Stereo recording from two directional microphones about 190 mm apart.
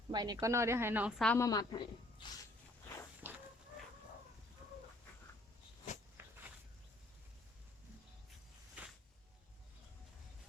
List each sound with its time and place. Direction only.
0.1 s speech: 20° right (ahead or behind)
1.2 s a woman's voice: 5° left (ahead or behind)
1.5 s speech: 20° left (ahead or behind)
3.2 s fowl: 10° right (ahead or behind)
6.2 s walk: 10° right (ahead or behind)